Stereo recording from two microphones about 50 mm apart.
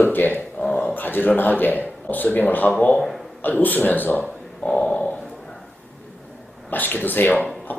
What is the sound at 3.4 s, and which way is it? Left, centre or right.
Speech, left.